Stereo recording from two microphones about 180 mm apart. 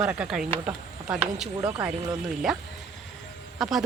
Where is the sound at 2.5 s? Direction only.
Centre (ahead or behind).